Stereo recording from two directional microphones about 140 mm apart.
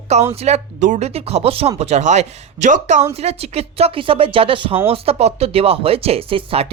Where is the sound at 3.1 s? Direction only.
50° right (ahead or behind).